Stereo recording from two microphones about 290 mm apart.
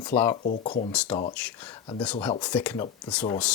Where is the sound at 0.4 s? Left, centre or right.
Left.